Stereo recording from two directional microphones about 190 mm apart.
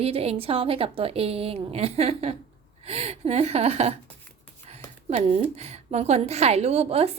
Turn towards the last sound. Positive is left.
turn(degrees=-30)  # may be behind; listen again after turning